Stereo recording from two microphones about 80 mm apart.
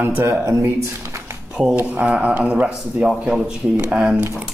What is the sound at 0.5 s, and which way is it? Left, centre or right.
Speech, right.